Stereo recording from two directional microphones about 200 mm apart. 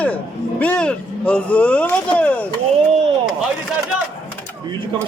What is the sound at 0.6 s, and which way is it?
Speech, 5° left (ahead or behind).